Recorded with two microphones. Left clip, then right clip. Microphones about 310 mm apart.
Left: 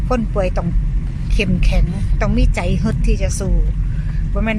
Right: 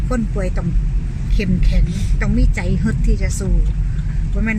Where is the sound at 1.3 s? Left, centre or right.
Centre.